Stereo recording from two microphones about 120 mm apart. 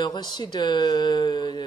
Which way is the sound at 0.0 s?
35° left (ahead or behind).